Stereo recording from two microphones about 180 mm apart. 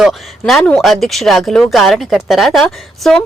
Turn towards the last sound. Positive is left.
turn(degrees=0)  # may be behind; listen again after turning